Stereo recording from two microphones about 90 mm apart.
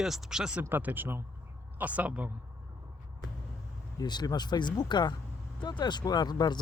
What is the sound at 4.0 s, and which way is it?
Speech, 50° left (ahead or behind).